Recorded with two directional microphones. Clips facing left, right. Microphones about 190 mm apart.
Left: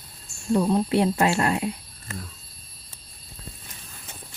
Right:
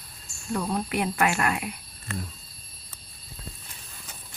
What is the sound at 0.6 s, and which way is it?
Speech, 25° left (ahead or behind).